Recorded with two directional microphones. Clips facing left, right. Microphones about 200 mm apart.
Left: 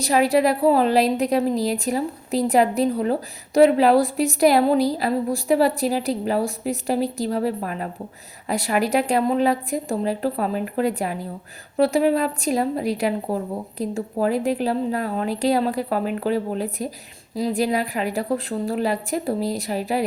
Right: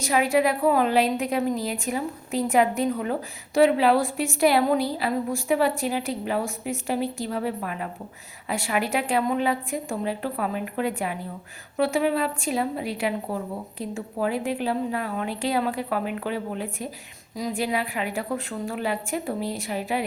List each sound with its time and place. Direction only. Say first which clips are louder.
0.0 s a woman's voice: left 3 dB; 35° left (ahead or behind)